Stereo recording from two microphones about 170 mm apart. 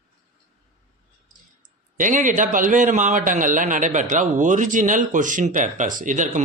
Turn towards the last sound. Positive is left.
turn(degrees=-50)  # may be behind; listen again after turning